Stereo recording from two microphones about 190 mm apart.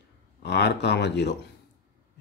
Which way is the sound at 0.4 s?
60° left (ahead or behind).